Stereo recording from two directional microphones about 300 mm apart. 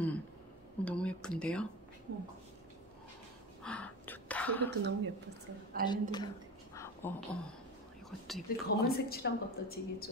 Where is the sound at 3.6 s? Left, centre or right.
Centre.